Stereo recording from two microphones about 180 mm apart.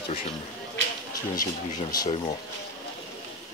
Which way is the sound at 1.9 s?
20° left (ahead or behind).